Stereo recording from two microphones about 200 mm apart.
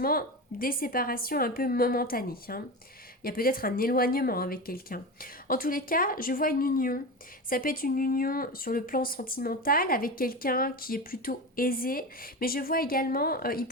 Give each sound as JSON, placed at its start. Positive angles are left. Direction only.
{"t": 0.0, "sound": "speech", "side_deg": 50}